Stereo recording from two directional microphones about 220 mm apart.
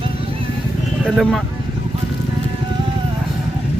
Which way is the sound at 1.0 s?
Centre (ahead or behind).